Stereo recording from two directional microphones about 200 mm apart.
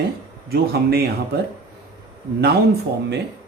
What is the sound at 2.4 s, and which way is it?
Speech, 50° right (ahead or behind).